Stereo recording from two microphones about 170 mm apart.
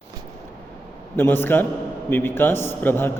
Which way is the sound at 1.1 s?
15° left (ahead or behind).